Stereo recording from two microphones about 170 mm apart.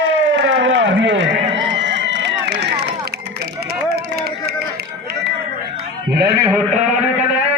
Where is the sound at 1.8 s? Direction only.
90° right.